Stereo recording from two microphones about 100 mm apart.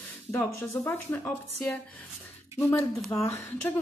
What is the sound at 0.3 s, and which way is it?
A woman's voice, 25° left (ahead or behind).